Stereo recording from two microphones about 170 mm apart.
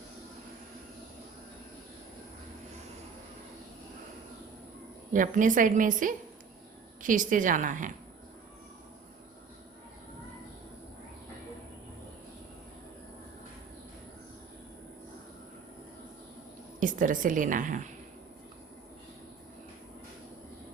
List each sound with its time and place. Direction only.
5.1 s a woman's voice: 50° right (ahead or behind)
16.8 s a woman's voice: 50° right (ahead or behind)